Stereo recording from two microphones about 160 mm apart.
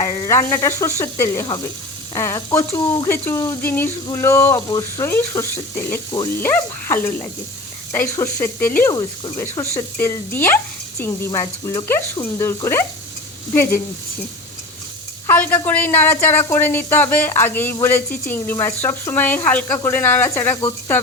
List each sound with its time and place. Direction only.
0.0 s speech: 15° left (ahead or behind)
9.0 s speech: 25° left (ahead or behind)
15.3 s speech: 15° left (ahead or behind)